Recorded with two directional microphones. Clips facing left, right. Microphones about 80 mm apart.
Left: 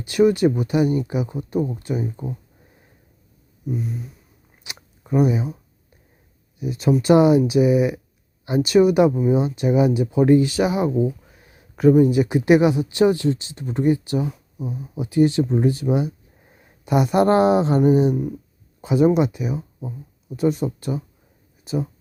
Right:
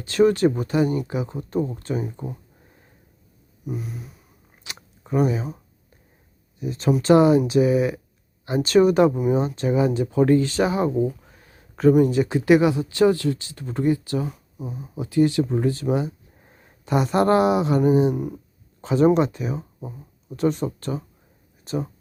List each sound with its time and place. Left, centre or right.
0.0 s speech: centre
0.9 s speech: right
1.1 s speech: centre
3.7 s speech: centre
4.7 s chewing: centre
6.6 s speech: centre
17.2 s a sound: left
17.9 s speech: right
18.8 s speech: centre